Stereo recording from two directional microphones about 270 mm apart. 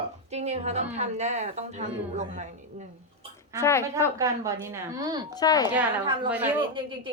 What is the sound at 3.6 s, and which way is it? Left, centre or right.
Speech, centre.